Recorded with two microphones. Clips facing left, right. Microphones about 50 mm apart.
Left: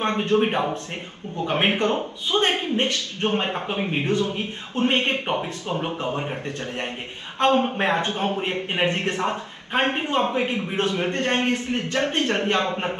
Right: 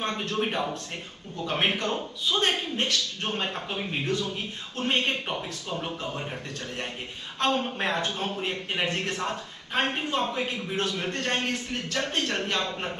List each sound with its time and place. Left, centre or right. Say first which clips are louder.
0.0 s a man's voice: left 8 dB; left
7.3 s a man's voice: left 7 dB; left